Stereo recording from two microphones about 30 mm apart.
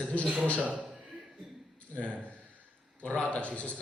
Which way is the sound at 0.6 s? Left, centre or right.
Right.